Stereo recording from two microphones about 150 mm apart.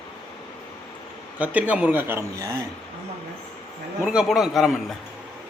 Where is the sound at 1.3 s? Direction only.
10° right (ahead or behind).